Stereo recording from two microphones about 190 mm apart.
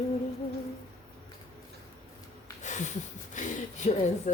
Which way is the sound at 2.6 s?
40° left (ahead or behind).